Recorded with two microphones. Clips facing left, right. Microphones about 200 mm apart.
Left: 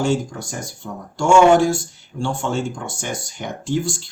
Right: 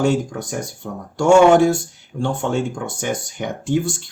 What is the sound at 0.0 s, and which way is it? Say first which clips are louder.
Speech: right 2 dB; 60° right (ahead or behind).